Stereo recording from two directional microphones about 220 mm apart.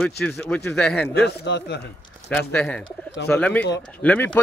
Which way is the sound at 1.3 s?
50° left (ahead or behind).